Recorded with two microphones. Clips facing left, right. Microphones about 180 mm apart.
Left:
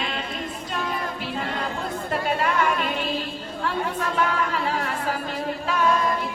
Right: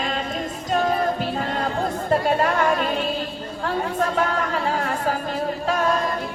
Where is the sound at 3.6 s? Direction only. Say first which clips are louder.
Right 3 dB; 40° right (ahead or behind).